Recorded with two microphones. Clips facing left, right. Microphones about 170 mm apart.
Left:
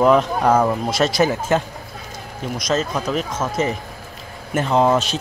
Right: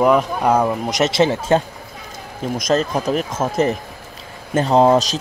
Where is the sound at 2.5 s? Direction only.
50° right (ahead or behind).